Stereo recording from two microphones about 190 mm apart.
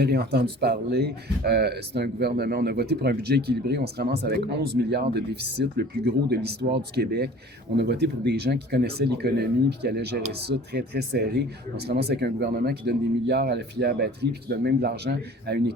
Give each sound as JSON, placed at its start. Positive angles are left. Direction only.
{"t": 0.0, "sound": "speech", "side_deg": -55}